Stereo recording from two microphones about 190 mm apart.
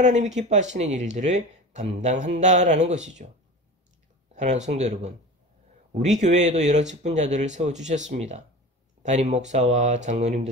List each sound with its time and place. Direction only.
0.0 s speech: 40° right (ahead or behind)
4.4 s speech: 40° right (ahead or behind)
6.1 s speech: 40° right (ahead or behind)